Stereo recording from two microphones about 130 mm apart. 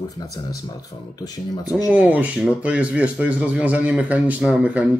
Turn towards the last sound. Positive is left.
turn(degrees=-10)  # may be behind; listen again after turning